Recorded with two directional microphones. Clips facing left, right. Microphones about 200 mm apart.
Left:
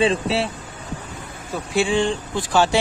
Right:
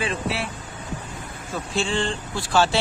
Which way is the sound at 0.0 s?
30° left (ahead or behind).